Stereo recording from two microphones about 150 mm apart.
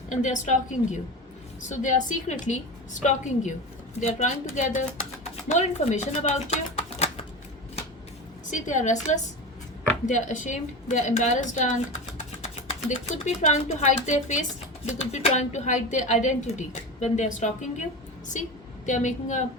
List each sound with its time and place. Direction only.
0.1 s a woman's voice: 55° left (ahead or behind)
1.7 s a woman's voice: 55° left (ahead or behind)
8.4 s a woman's voice: 55° left (ahead or behind)